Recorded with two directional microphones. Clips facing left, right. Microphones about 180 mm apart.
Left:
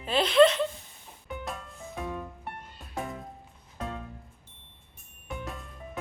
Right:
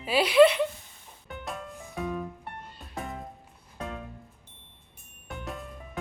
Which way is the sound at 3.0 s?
Centre (ahead or behind).